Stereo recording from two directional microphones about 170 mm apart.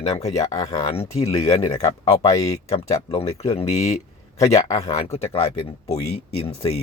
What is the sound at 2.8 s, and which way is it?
Speech, 35° left (ahead or behind).